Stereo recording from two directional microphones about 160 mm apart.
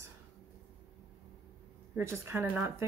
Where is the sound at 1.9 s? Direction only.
15° right (ahead or behind).